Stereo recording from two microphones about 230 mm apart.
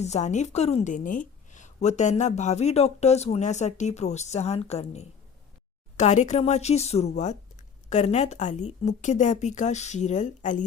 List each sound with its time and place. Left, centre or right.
0.0 s a woman's voice: left